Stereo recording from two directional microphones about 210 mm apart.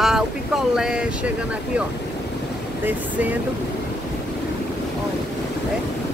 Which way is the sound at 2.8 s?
10° right (ahead or behind).